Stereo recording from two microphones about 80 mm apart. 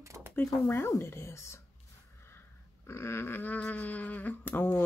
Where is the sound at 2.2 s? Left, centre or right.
Left.